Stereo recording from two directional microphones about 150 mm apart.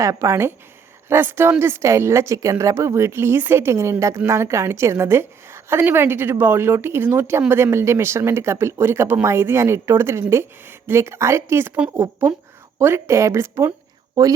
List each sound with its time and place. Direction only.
0.0 s a woman's voice: 20° right (ahead or behind)